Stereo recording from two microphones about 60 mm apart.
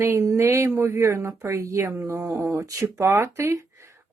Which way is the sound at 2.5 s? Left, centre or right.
Right.